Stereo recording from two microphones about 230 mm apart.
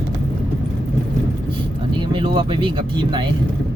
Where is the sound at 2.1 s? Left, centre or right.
Right.